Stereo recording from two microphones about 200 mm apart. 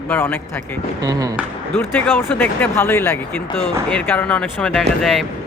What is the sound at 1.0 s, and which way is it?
Speech, 20° right (ahead or behind).